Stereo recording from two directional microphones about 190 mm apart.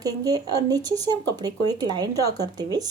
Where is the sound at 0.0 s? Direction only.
20° right (ahead or behind).